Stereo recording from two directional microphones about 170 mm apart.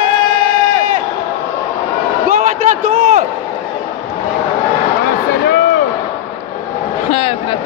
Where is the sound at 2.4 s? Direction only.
45° right (ahead or behind).